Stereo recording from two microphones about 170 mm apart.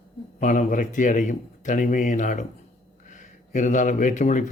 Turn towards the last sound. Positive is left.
turn(degrees=45)  # may be behind; listen again after turning